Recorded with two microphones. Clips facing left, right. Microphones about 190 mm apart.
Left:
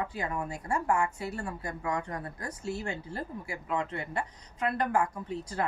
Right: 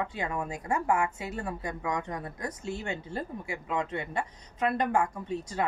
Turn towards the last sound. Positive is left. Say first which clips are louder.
# right 2 dB
turn(degrees=-25)  # may be behind; listen again after turning